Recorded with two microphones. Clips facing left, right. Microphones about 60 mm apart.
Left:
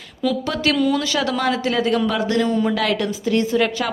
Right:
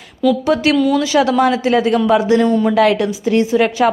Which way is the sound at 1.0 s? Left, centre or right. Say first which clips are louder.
Right 7 dB; right.